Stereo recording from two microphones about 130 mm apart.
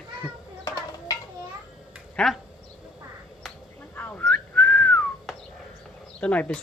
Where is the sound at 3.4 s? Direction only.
5° left (ahead or behind).